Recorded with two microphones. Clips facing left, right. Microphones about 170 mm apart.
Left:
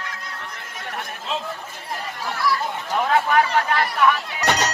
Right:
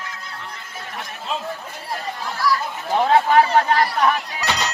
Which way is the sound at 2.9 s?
30° right (ahead or behind).